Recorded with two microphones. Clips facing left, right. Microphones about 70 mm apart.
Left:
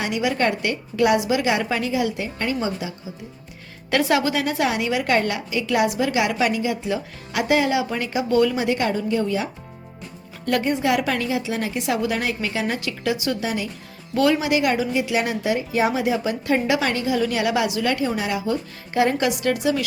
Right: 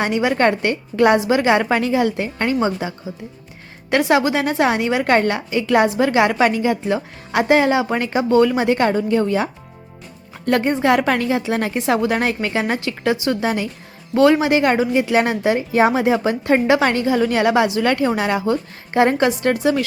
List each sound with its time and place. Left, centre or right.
0.0 s a woman's voice: right
3.8 s a woman's voice: right
10.4 s a woman's voice: right
17.7 s a woman's voice: right